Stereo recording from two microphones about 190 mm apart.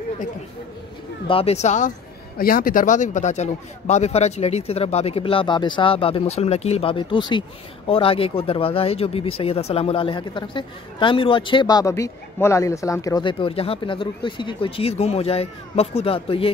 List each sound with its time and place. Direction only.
1.2 s speech: 30° left (ahead or behind)
2.3 s a man's voice: 50° left (ahead or behind); by 16.5 s 30° left (ahead or behind)